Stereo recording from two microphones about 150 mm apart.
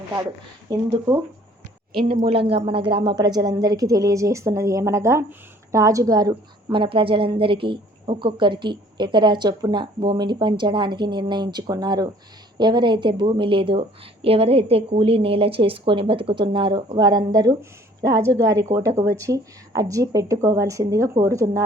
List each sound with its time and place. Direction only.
0.7 s a woman's voice: 20° right (ahead or behind)
2.0 s a woman's voice: 35° right (ahead or behind); by 21.6 s 20° right (ahead or behind)